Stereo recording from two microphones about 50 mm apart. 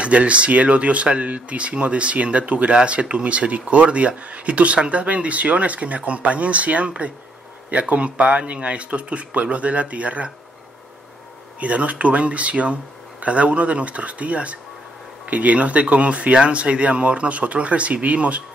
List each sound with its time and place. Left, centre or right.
0.0 s speech: right
11.6 s speech: right